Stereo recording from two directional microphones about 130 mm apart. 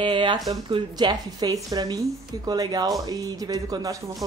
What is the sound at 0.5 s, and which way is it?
Speech, 35° right (ahead or behind).